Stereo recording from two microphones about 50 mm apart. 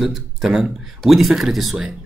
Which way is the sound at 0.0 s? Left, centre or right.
Centre.